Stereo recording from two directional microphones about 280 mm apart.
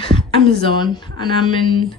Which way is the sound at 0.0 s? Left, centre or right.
Centre.